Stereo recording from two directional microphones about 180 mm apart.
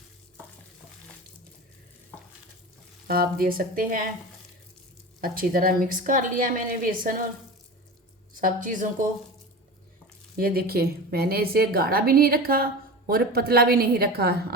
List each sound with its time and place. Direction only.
3.1 s a woman's voice: 55° right (ahead or behind)
5.2 s a woman's voice: 50° right (ahead or behind)
8.4 s a woman's voice: 50° right (ahead or behind)
10.3 s a woman's voice: 55° right (ahead or behind)